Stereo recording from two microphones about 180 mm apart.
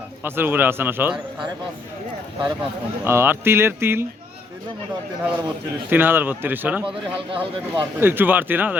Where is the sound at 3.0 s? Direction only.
15° right (ahead or behind).